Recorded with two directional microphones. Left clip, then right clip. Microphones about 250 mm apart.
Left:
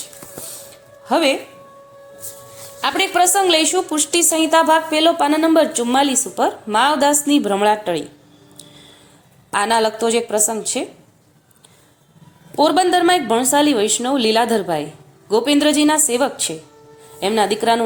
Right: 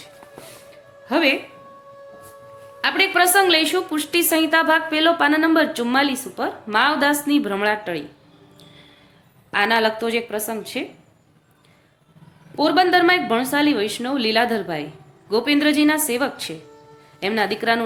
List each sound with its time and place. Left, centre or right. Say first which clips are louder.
1.0 s speech: left 2 dB; centre
3.2 s a woman's voice: left 2 dB; centre
9.5 s a woman's voice: left 2 dB; centre
12.5 s a woman's voice: left 2 dB; centre